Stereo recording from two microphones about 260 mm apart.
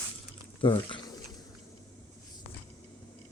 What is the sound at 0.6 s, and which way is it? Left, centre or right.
Speech, centre.